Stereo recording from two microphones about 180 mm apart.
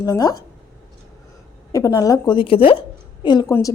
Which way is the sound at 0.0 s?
20° left (ahead or behind).